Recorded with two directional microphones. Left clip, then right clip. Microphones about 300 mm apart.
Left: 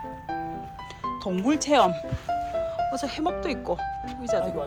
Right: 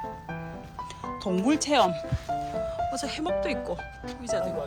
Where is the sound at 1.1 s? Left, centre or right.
Centre.